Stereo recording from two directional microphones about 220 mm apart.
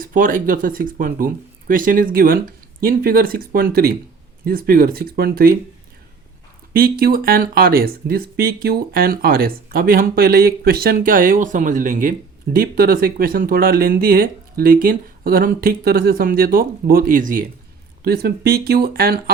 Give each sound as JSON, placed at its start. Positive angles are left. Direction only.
{"t": 0.0, "sound": "speech", "side_deg": -40}
{"t": 6.7, "sound": "speech", "side_deg": -40}